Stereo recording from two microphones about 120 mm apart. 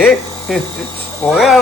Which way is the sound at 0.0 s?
Centre (ahead or behind).